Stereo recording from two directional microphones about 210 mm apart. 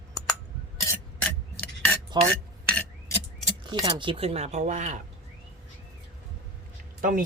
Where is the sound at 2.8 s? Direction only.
10° left (ahead or behind).